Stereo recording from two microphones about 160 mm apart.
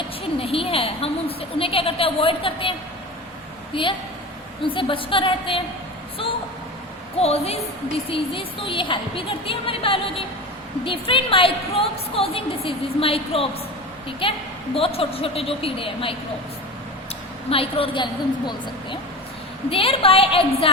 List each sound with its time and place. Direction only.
0.3 s a woman's voice: 35° left (ahead or behind)
3.7 s a woman's voice: 30° left (ahead or behind)
7.2 s a woman's voice: 40° left (ahead or behind)
17.5 s a woman's voice: 35° left (ahead or behind)